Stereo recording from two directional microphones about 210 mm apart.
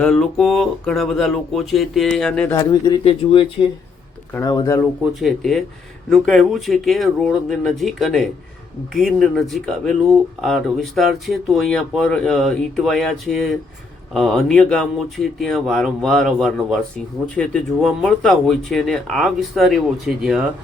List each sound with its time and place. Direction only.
0.0 s speech: 5° left (ahead or behind)
2.6 s speech: 20° left (ahead or behind)
4.4 s speech: 15° left (ahead or behind)
5.2 s speech: centre (ahead or behind)